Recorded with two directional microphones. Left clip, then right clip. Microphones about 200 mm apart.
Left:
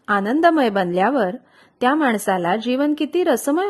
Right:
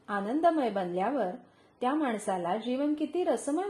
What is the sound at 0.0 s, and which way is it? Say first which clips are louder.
A woman's voice: left 11 dB; 50° left (ahead or behind).